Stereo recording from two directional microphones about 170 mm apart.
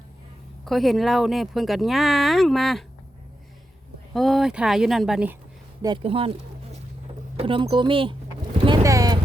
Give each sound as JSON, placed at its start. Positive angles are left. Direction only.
{"t": 0.6, "sound": "speech", "side_deg": 0}
{"t": 4.1, "sound": "speech", "side_deg": 0}
{"t": 5.8, "sound": "speech", "side_deg": -30}
{"t": 8.6, "sound": "clip-clop", "side_deg": -20}